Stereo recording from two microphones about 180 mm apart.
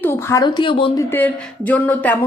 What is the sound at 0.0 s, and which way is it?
A woman's voice, 15° left (ahead or behind).